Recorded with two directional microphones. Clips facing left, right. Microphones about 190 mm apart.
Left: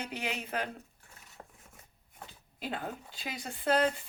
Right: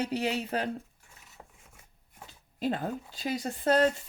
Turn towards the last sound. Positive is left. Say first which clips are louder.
# right 4 dB
turn(degrees=-40)  # may be behind; listen again after turning